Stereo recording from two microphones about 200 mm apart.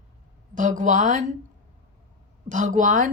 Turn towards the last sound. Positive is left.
turn(degrees=-40)  # may be behind; listen again after turning